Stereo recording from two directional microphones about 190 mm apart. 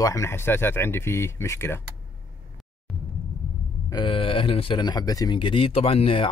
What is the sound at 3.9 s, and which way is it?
Speech, 25° left (ahead or behind).